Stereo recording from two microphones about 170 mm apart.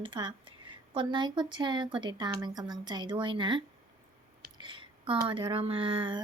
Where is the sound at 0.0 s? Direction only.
30° right (ahead or behind).